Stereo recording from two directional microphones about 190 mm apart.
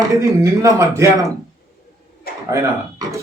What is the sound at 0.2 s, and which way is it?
Speech, 15° right (ahead or behind).